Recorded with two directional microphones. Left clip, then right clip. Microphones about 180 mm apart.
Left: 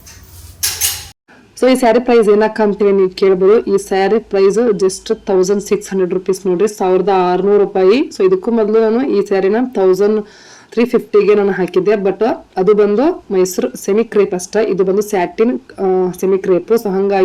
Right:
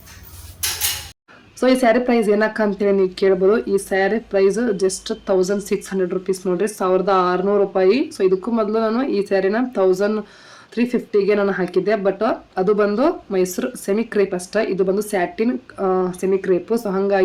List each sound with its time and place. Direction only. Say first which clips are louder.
1.5 s speech: left 5 dB; 15° left (ahead or behind)